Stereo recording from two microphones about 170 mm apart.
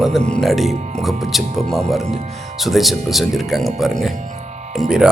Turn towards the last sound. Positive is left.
turn(degrees=-5)  # may be behind; listen again after turning